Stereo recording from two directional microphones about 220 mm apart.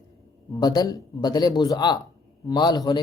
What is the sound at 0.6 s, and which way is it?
Speech, 20° left (ahead or behind).